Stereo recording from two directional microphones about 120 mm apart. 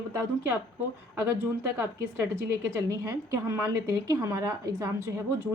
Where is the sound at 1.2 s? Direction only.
20° right (ahead or behind).